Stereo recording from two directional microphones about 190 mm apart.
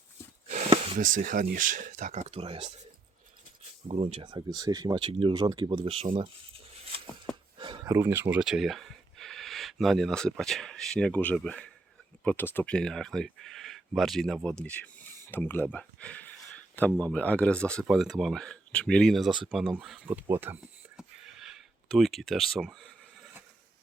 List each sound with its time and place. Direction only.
0.4 s snort: 35° right (ahead or behind)
0.9 s speech: 45° right (ahead or behind); by 2.7 s 30° right (ahead or behind)
3.8 s speech: 30° right (ahead or behind)
7.3 s a sound: 5° left (ahead or behind)
7.6 s speech: 25° right (ahead or behind); by 19.3 s centre (ahead or behind)
19.5 s a sound: 5° right (ahead or behind)